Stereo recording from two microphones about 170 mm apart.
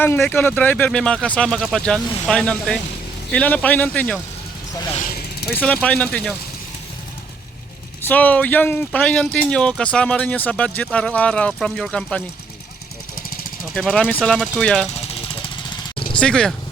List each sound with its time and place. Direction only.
0.0 s speech: 10° left (ahead or behind)
5.5 s speech: 10° left (ahead or behind)
8.0 s speech: 10° left (ahead or behind)
13.7 s speech: centre (ahead or behind)
15.4 s vehicle: 30° left (ahead or behind)
16.1 s speech: 5° left (ahead or behind)